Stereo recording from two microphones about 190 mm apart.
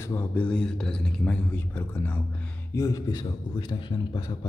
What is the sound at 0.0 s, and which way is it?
A man's voice, 10° left (ahead or behind).